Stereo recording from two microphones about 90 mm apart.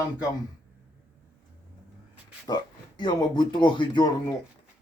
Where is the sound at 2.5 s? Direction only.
55° left (ahead or behind).